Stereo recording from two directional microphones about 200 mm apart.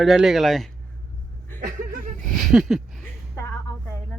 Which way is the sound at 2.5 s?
Centre (ahead or behind).